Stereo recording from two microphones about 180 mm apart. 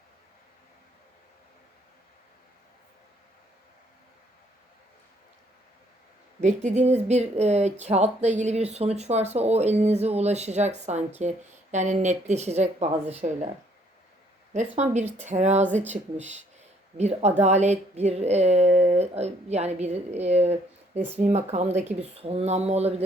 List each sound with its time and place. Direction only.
6.4 s speech: 40° right (ahead or behind)
14.5 s speech: 40° right (ahead or behind)